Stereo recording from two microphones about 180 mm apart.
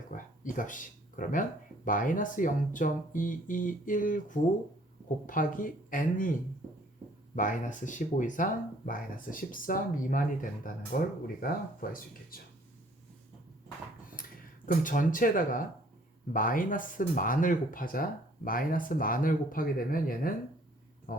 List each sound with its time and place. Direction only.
0.1 s speech: 50° left (ahead or behind)
7.3 s speech: 45° left (ahead or behind)
14.7 s speech: 50° left (ahead or behind)
21.1 s a sound: 50° left (ahead or behind)